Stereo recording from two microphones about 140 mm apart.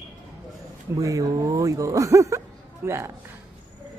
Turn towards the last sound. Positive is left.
turn(degrees=-20)  # may be behind; listen again after turning